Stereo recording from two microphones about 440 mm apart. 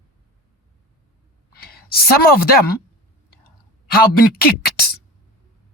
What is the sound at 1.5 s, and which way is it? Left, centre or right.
A woman's voice, left.